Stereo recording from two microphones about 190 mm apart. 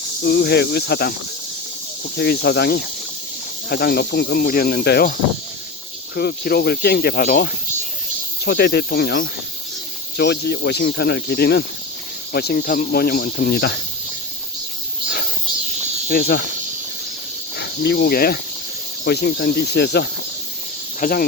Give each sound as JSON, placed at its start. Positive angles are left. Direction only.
{"t": 0.2, "sound": "speech", "side_deg": 60}
{"t": 2.1, "sound": "speech", "side_deg": 60}
{"t": 6.1, "sound": "speech", "side_deg": 55}
{"t": 8.4, "sound": "speech", "side_deg": 60}
{"t": 16.0, "sound": "speech", "side_deg": 55}
{"t": 17.6, "sound": "speech", "side_deg": 60}
{"t": 21.0, "sound": "speech", "side_deg": 50}